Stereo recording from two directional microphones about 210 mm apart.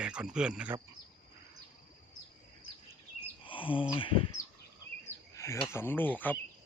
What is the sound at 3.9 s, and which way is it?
Speech, 25° left (ahead or behind).